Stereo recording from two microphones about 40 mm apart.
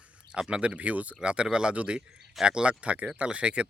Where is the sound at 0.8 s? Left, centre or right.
Right.